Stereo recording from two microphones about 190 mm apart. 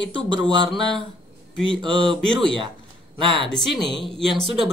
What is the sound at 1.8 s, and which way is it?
Speech, 25° right (ahead or behind).